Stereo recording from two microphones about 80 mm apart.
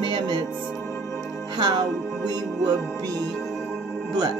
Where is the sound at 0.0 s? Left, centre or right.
Right.